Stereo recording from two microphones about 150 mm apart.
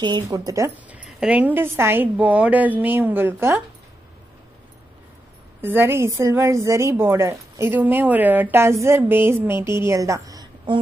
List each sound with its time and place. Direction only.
0.0 s a woman's voice: 30° right (ahead or behind)
0.8 s a woman's voice: 5° right (ahead or behind)
5.6 s a woman's voice: 15° right (ahead or behind)